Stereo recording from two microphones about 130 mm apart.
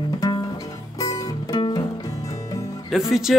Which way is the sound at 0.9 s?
30° left (ahead or behind).